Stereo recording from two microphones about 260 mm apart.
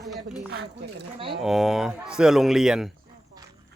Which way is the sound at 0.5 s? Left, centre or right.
Right.